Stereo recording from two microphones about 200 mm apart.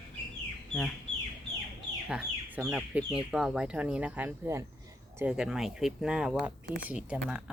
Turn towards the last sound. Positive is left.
turn(degrees=-5)  # may be behind; listen again after turning